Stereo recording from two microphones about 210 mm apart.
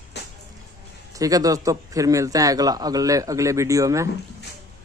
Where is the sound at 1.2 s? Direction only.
15° right (ahead or behind).